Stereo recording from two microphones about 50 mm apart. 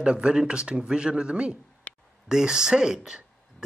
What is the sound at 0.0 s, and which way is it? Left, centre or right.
Speech, right.